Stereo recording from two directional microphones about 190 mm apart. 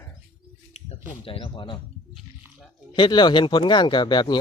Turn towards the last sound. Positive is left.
turn(degrees=25)  # may be behind; listen again after turning